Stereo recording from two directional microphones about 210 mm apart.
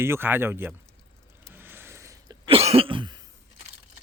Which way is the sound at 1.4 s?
10° right (ahead or behind).